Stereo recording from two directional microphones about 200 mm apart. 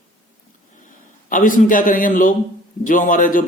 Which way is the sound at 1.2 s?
40° left (ahead or behind).